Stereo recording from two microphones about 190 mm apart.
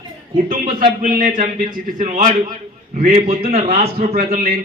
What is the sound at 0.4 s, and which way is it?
A man's voice, 45° right (ahead or behind).